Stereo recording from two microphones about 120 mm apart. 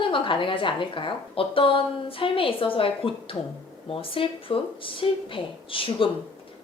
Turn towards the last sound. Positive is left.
turn(degrees=50)  # may be behind; listen again after turning